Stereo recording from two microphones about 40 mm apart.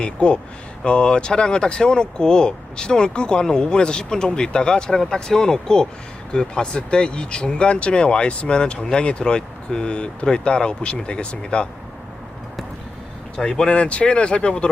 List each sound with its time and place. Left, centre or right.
0.0 s speech: left
13.3 s speech: centre
13.7 s speech: left